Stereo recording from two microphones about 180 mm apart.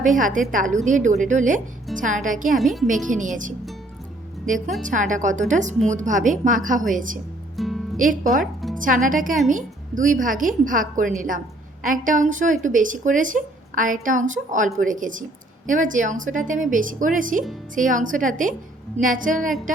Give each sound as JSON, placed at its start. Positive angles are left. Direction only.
{"t": 0.0, "sound": "a woman's voice", "side_deg": -45}
{"t": 2.6, "sound": "a woman's voice", "side_deg": 0}
{"t": 2.8, "sound": "a woman's voice", "side_deg": -45}
{"t": 7.5, "sound": "music", "side_deg": 0}
{"t": 7.9, "sound": "a woman's voice", "side_deg": -50}